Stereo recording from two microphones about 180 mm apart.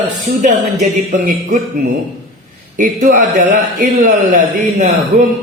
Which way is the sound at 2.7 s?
45° right (ahead or behind).